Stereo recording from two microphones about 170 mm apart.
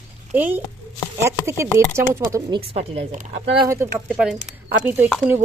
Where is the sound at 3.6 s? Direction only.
15° right (ahead or behind).